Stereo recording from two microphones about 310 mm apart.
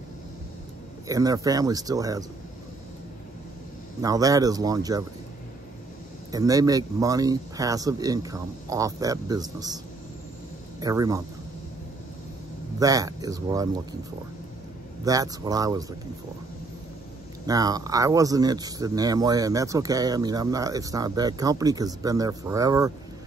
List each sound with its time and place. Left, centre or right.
1.0 s speech: centre
4.0 s speech: centre
6.3 s speech: centre
10.8 s speech: centre
12.7 s speech: centre
15.0 s speech: centre
17.5 s speech: centre